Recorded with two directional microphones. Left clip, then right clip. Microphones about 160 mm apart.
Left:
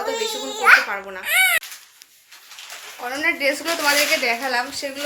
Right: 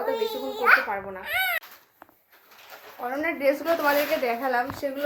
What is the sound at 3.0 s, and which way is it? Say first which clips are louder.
A woman's voice: left 5 dB; 5° left (ahead or behind).